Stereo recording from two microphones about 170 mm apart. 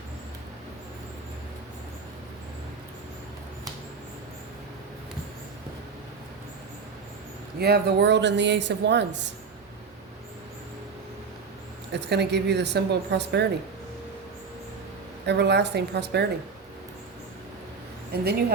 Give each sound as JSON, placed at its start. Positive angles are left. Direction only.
{"t": 7.6, "sound": "speech", "side_deg": -70}
{"t": 11.9, "sound": "a woman's voice", "side_deg": -85}
{"t": 15.3, "sound": "a woman's voice", "side_deg": -85}
{"t": 18.1, "sound": "speech", "side_deg": -70}